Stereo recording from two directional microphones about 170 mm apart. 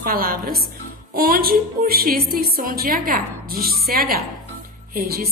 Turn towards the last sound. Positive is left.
turn(degrees=-65)  # may be behind; listen again after turning